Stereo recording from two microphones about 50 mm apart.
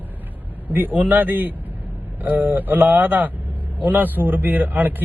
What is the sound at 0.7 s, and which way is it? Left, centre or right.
A man's voice, right.